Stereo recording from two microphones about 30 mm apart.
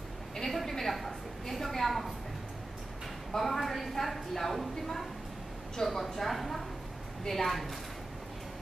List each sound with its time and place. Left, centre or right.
0.4 s a sound: centre
3.3 s a woman's voice: centre
6.1 s a woman's voice: centre